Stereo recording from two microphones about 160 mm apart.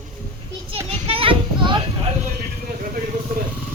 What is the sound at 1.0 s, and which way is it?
Children playing, 35° right (ahead or behind).